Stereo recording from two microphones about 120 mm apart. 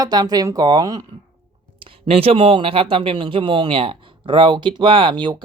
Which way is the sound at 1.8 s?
55° right (ahead or behind).